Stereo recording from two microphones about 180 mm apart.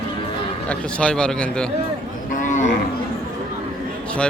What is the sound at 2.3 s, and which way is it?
Cattle, 45° left (ahead or behind).